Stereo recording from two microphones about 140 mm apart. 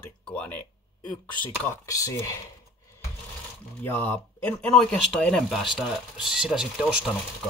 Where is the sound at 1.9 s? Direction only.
25° left (ahead or behind).